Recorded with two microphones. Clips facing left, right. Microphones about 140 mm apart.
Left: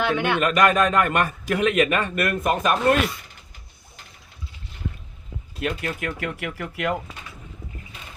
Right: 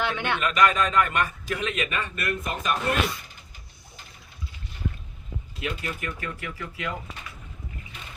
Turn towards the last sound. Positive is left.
turn(degrees=65)  # may be behind; listen again after turning